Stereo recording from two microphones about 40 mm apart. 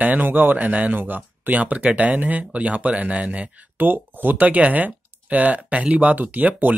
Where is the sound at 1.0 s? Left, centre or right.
Right.